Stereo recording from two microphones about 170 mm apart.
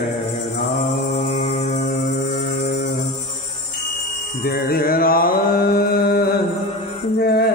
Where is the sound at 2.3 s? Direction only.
50° left (ahead or behind).